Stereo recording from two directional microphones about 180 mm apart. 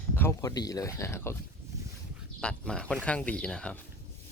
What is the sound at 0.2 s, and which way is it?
Speech, 15° left (ahead or behind).